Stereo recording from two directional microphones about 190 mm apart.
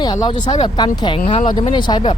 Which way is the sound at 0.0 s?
20° left (ahead or behind).